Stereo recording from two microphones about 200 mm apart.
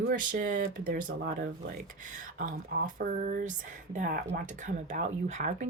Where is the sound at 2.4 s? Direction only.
45° right (ahead or behind).